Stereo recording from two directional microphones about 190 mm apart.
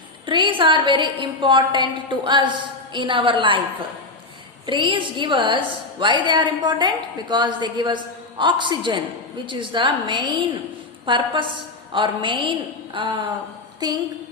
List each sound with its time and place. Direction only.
0.3 s a woman's voice: 25° right (ahead or behind)
4.6 s a woman's voice: 25° right (ahead or behind)